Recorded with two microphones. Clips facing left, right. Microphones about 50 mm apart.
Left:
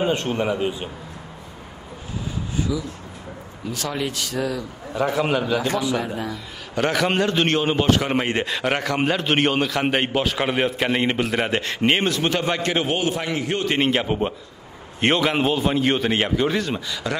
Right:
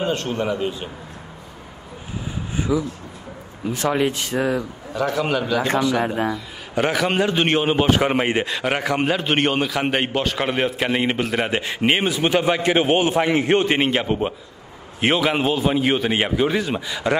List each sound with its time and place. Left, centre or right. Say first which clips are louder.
0.0 s a man's voice: left 1 dB; centre
2.5 s a sound: right 4 dB; right
3.6 s speech: right 6 dB; right
4.9 s a man's voice: even; centre
5.6 s speech: right 3 dB; right
6.7 s a man's voice: right 1 dB; centre
8.5 s a man's voice: right 1 dB; centre; by 13.7 s right
13.7 s a man's voice: right 1 dB; centre; by 17.2 s right